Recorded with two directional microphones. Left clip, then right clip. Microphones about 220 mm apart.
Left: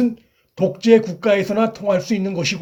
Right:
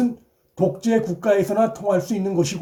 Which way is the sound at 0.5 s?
20° left (ahead or behind).